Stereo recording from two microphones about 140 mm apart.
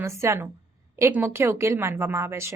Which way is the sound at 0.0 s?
20° right (ahead or behind).